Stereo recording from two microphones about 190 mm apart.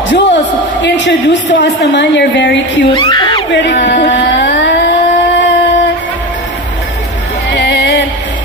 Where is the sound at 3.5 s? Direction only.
65° left (ahead or behind).